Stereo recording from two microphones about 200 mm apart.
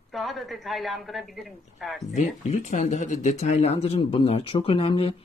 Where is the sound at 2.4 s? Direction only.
35° left (ahead or behind).